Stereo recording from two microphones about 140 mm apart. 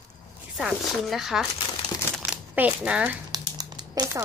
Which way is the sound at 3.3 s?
25° right (ahead or behind).